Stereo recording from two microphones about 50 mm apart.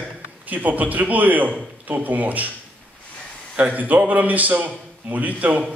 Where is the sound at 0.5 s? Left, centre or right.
Right.